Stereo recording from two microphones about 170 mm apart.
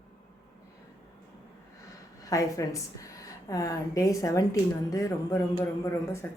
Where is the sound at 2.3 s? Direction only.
20° left (ahead or behind).